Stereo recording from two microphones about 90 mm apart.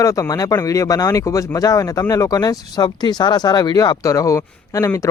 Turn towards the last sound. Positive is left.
turn(degrees=35)  # may be behind; listen again after turning